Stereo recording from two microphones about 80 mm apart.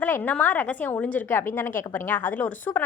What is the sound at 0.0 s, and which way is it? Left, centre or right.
A woman's voice, left.